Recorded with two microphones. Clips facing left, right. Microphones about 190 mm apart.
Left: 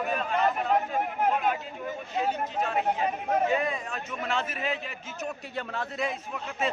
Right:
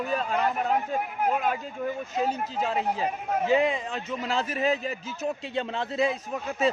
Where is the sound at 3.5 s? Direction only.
25° right (ahead or behind).